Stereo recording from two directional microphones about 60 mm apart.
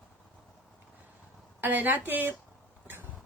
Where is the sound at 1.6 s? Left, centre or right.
Right.